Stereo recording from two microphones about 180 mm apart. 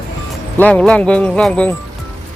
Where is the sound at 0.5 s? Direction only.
5° left (ahead or behind).